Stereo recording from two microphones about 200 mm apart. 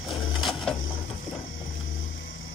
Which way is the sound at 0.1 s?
Centre (ahead or behind).